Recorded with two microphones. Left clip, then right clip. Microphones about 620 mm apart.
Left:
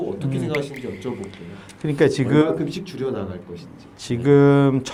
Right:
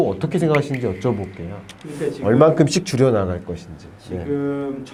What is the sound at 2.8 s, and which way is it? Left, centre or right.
Speech, right.